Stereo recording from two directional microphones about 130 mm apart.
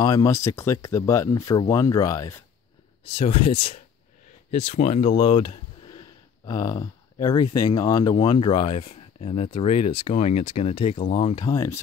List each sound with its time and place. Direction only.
0.0 s speech: 30° left (ahead or behind)
3.2 s speech: 45° left (ahead or behind)
4.6 s speech: 60° left (ahead or behind)
5.1 s speech: 40° left (ahead or behind)
6.4 s speech: 30° left (ahead or behind)
8.8 s speech: 55° left (ahead or behind); by 11.4 s 40° left (ahead or behind)
11.4 s speech: 25° left (ahead or behind)